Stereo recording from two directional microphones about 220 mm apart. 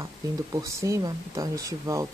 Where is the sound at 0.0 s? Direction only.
15° right (ahead or behind).